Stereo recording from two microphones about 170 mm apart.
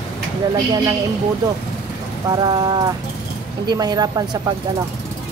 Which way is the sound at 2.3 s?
25° right (ahead or behind).